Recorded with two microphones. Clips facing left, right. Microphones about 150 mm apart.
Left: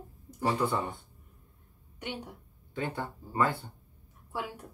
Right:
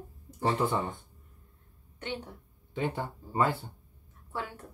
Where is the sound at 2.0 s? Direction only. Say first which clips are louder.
Right 1 dB; 10° left (ahead or behind).